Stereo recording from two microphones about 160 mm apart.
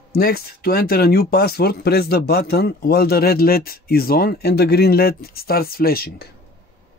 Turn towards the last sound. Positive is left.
turn(degrees=70)  # may be behind; listen again after turning